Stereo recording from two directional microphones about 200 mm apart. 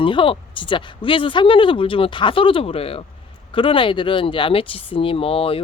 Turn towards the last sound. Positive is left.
turn(degrees=30)  # may be behind; listen again after turning